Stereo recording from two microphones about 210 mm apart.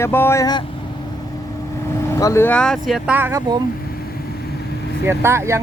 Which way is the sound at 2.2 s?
10° left (ahead or behind).